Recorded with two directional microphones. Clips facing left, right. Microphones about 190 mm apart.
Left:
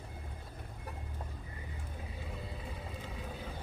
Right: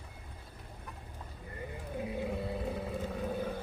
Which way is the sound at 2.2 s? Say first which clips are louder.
Right 7 dB; 60° right (ahead or behind).